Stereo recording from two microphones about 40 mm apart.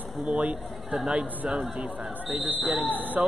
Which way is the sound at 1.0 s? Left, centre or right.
Right.